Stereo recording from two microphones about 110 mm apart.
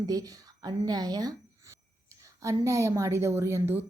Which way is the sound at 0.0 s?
35° right (ahead or behind).